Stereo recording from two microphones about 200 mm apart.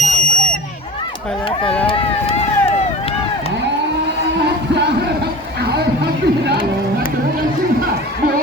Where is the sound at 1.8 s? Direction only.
30° left (ahead or behind).